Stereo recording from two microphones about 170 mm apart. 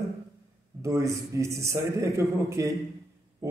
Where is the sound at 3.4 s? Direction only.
15° right (ahead or behind).